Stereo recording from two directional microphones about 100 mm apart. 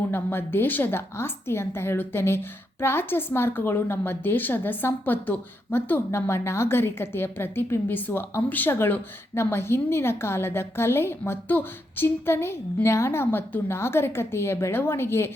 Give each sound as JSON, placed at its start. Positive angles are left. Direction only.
{"t": 0.1, "sound": "a woman's voice", "side_deg": 20}